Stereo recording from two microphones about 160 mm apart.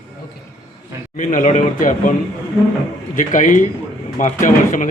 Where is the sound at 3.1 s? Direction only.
50° left (ahead or behind).